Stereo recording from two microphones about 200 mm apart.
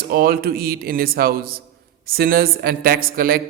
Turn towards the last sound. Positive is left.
turn(degrees=-45)  # may be behind; listen again after turning